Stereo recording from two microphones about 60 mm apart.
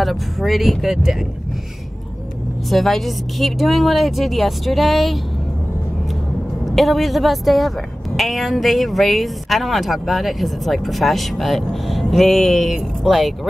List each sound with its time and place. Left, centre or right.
0.0 s a woman's voice: centre
2.7 s a woman's voice: centre
6.6 s a woman's voice: centre